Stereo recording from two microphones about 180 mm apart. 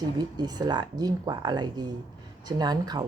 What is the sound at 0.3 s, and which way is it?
Speech, 20° right (ahead or behind).